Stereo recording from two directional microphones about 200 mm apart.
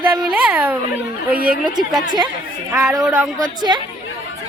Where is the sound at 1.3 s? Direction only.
50° right (ahead or behind).